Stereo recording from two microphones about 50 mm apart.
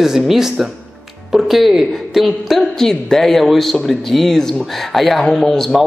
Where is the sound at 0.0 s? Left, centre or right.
Centre.